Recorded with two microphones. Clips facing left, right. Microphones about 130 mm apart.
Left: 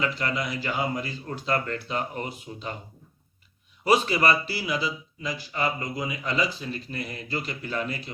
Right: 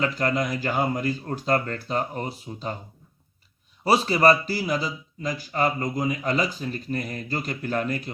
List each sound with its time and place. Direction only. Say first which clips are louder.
0.0 s speech: right 4 dB; 45° right (ahead or behind)
3.8 s speech: right 3 dB; 35° right (ahead or behind)